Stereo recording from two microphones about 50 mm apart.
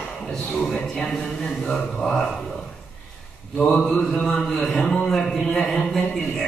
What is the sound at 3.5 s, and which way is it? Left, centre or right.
Speech, centre.